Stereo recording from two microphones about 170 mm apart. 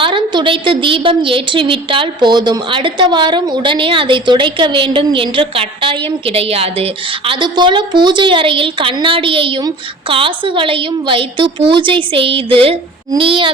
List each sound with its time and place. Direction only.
0.0 s a woman's voice: 30° right (ahead or behind)